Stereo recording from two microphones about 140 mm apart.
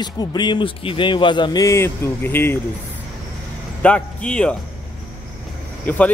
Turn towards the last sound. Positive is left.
turn(degrees=10)  # may be behind; listen again after turning